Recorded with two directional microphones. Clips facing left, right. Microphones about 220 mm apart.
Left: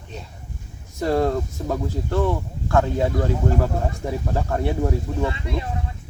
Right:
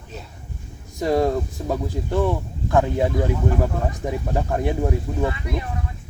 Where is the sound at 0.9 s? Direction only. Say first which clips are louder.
Right 1 dB; 10° right (ahead or behind).